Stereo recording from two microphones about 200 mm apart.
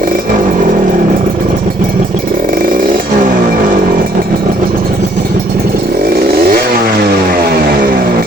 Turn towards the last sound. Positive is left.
turn(degrees=-50)  # may be behind; listen again after turning